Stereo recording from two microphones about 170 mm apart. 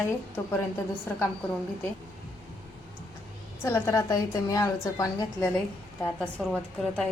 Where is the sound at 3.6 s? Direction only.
15° left (ahead or behind).